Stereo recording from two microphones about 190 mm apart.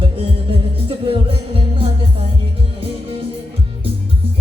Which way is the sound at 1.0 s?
30° right (ahead or behind).